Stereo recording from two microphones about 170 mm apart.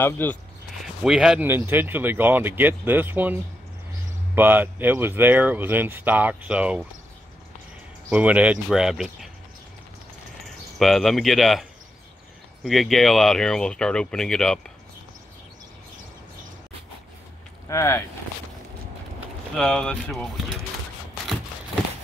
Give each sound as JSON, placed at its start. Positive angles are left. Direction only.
{"t": 0.0, "sound": "speech", "side_deg": 10}
{"t": 1.0, "sound": "speech", "side_deg": 0}
{"t": 4.4, "sound": "speech", "side_deg": -10}
{"t": 8.1, "sound": "speech", "side_deg": -10}
{"t": 10.4, "sound": "speech", "side_deg": 0}
{"t": 12.6, "sound": "speech", "side_deg": 0}
{"t": 17.6, "sound": "speech", "side_deg": 15}
{"t": 19.5, "sound": "speech", "side_deg": 5}